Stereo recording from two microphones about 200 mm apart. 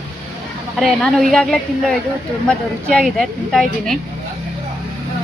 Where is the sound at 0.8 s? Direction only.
Centre (ahead or behind).